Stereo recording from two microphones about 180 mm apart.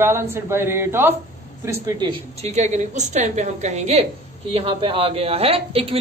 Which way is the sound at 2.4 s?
40° right (ahead or behind).